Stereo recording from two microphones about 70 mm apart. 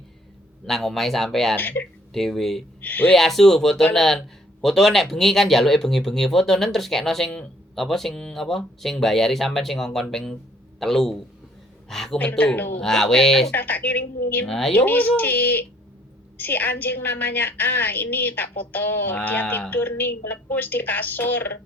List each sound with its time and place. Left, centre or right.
0.6 s speech: centre
1.5 s a woman's voice: left
2.1 s speech: centre
2.8 s a woman's voice: left
3.1 s a man's voice: centre
12.1 s a woman's voice: left
12.8 s speech: centre
13.5 s a woman's voice: left
14.4 s speech: centre
14.7 s a woman's voice: left